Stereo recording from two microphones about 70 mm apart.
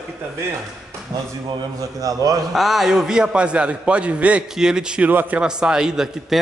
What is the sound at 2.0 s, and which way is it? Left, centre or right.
Speech, right.